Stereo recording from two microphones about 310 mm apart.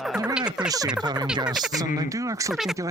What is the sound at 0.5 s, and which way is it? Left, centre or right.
Speech, centre.